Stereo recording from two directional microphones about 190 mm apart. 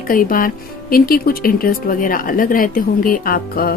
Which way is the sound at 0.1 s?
50° left (ahead or behind).